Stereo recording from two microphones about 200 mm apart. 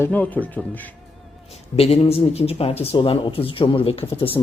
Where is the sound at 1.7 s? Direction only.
30° left (ahead or behind).